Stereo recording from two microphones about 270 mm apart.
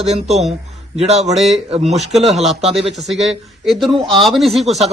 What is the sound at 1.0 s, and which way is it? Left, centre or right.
Speech, right.